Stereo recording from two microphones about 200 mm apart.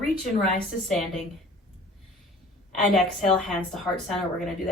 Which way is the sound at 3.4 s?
Centre (ahead or behind).